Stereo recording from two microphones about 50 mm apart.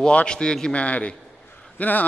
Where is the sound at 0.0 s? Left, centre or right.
Left.